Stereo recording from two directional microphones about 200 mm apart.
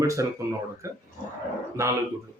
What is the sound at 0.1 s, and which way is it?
Speech, 15° right (ahead or behind).